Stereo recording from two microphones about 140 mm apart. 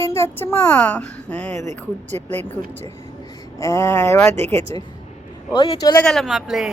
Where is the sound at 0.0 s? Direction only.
20° left (ahead or behind).